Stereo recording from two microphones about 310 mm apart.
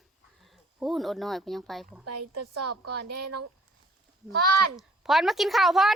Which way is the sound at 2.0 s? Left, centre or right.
Right.